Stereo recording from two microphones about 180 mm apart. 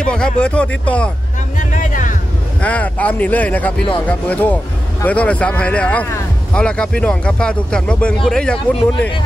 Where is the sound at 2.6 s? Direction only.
10° left (ahead or behind).